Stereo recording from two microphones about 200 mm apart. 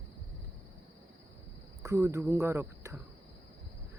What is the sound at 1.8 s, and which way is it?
Speech, 15° right (ahead or behind).